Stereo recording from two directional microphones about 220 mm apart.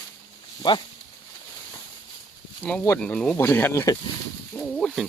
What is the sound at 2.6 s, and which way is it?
Speech, 5° left (ahead or behind).